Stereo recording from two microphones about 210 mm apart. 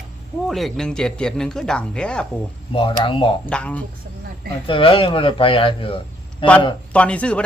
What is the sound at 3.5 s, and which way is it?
Speech, 5° left (ahead or behind).